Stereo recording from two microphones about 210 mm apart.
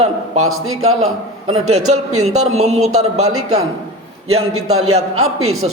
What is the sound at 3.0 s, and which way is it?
Speech, 90° right.